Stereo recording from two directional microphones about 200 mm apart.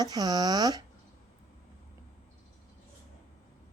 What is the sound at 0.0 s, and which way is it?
Speech, 20° right (ahead or behind).